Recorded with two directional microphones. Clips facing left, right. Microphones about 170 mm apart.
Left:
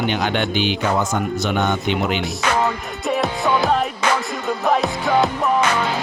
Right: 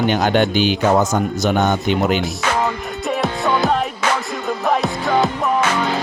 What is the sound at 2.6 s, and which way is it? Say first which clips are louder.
Music: even; centre (ahead or behind).